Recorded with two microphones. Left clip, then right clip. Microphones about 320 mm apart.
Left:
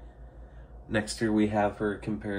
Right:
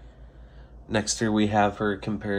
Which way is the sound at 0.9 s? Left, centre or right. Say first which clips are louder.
Right 3 dB; centre.